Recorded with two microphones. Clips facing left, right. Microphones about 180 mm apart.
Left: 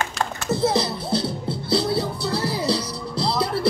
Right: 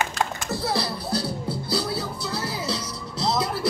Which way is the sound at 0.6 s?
20° left (ahead or behind).